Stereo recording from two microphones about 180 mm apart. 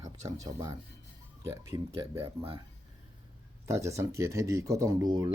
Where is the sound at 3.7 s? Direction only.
15° right (ahead or behind).